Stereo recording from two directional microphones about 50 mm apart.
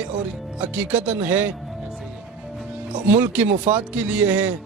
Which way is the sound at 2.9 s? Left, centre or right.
Right.